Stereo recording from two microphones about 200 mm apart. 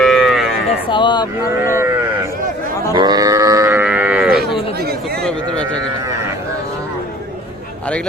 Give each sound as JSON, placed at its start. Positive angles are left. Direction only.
{"t": 0.0, "sound": "livestock", "side_deg": 0}
{"t": 0.9, "sound": "speech", "side_deg": 25}
{"t": 1.6, "sound": "speech", "side_deg": -15}
{"t": 2.9, "sound": "livestock", "side_deg": -20}